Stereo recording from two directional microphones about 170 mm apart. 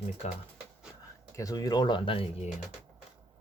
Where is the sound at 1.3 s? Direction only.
20° left (ahead or behind); by 2.5 s 35° left (ahead or behind).